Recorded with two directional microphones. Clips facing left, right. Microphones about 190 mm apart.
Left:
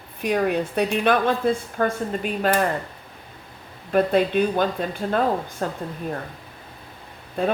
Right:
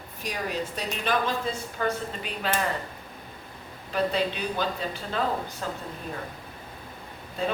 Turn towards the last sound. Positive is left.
turn(degrees=55)  # may be behind; listen again after turning